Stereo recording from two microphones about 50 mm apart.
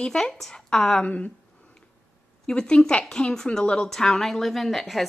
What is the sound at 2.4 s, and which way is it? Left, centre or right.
A woman's voice, centre.